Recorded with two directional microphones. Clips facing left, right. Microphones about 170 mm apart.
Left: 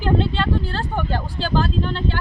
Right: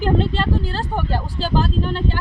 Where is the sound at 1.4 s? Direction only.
10° right (ahead or behind).